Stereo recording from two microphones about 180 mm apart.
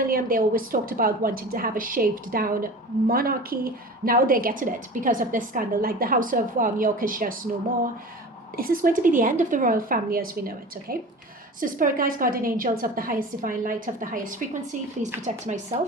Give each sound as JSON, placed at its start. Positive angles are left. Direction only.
{"t": 0.1, "sound": "a woman's voice", "side_deg": -50}
{"t": 8.5, "sound": "a woman's voice", "side_deg": -50}